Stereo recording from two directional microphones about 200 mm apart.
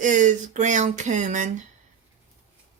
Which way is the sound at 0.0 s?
40° right (ahead or behind).